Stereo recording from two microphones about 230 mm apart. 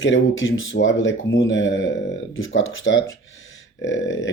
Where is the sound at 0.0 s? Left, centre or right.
Left.